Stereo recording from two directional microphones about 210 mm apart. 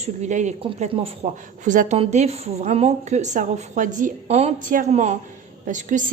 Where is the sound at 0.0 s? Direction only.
35° right (ahead or behind).